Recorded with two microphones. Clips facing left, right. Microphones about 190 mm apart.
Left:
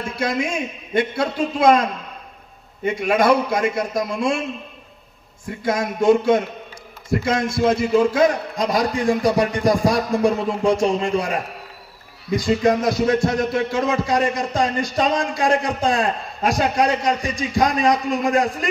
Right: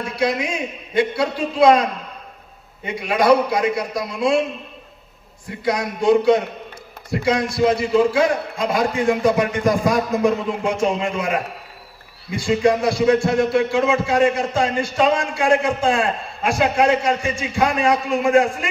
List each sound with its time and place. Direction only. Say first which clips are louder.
0.1 s a man's voice: right 2 dB; 45° left (ahead or behind)
5.6 s a man's voice: left 1 dB; 45° left (ahead or behind)